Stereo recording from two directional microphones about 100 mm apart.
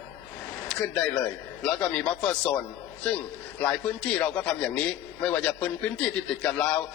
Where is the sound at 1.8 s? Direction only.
10° left (ahead or behind).